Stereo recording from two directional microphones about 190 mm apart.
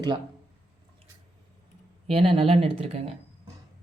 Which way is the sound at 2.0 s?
30° right (ahead or behind).